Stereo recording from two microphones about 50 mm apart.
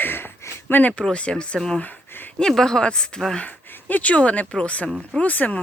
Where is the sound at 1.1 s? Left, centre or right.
Left.